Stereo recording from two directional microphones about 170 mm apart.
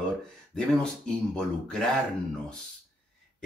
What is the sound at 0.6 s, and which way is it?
Speech, 5° left (ahead or behind).